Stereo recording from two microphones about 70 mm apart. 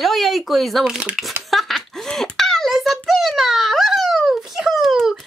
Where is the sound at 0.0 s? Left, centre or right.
Centre.